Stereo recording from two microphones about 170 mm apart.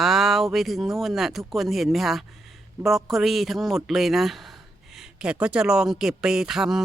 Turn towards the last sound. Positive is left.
turn(degrees=0)  # may be behind; listen again after turning